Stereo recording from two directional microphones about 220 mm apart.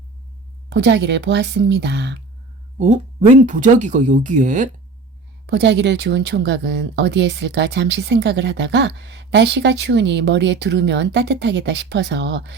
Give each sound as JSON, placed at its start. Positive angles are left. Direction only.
{"t": 0.7, "sound": "speech", "side_deg": -50}
{"t": 2.7, "sound": "speech", "side_deg": -30}
{"t": 5.5, "sound": "speech", "side_deg": -50}